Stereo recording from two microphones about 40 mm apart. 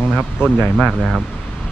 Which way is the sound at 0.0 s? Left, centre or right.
Centre.